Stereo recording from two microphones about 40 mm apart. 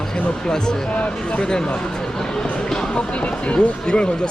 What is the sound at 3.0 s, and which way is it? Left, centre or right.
Speech, left.